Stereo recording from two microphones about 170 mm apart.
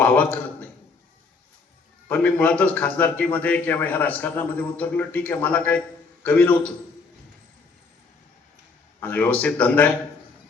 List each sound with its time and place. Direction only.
2.0 s a man's voice: 10° left (ahead or behind)
9.0 s a man's voice: 10° left (ahead or behind)